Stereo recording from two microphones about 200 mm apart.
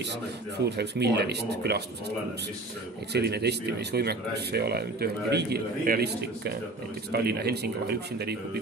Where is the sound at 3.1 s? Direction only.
55° right (ahead or behind).